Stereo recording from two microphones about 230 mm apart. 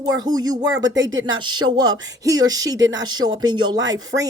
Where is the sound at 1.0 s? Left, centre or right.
Right.